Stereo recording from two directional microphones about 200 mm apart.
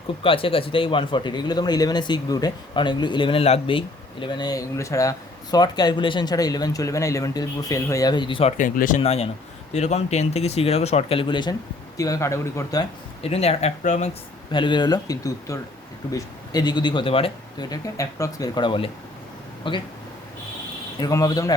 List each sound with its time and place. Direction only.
0.2 s speech: 25° left (ahead or behind)
8.5 s speech: 40° left (ahead or behind)
9.0 s speech: 30° left (ahead or behind)
21.0 s speech: 15° left (ahead or behind)